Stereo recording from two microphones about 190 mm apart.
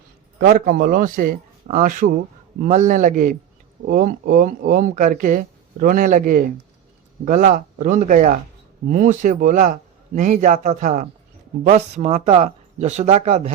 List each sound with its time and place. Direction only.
0.3 s speech: 50° right (ahead or behind)